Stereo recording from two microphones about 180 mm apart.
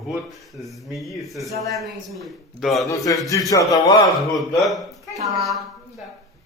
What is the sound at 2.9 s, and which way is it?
A man's voice, 20° left (ahead or behind).